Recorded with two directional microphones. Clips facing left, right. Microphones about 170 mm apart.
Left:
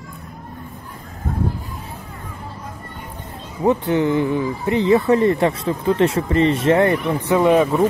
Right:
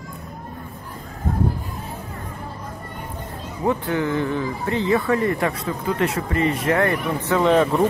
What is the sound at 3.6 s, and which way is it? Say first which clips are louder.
Speech: left 5 dB; 20° left (ahead or behind).